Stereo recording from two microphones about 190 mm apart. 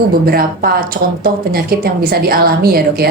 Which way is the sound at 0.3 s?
50° right (ahead or behind).